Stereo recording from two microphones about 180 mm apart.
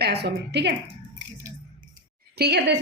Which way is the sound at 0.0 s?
65° right (ahead or behind).